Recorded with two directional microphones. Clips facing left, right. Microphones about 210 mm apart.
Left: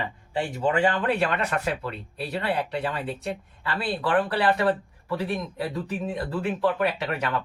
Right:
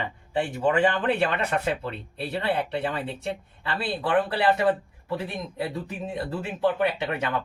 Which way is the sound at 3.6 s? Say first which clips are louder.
Left 1 dB; 25° right (ahead or behind).